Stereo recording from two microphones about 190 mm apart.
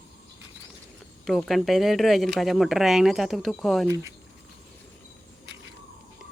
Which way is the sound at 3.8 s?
15° right (ahead or behind).